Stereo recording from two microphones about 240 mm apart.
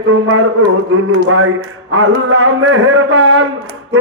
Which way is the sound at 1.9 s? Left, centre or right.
Right.